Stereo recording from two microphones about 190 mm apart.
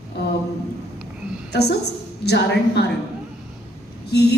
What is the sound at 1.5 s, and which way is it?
A woman's voice, 60° left (ahead or behind).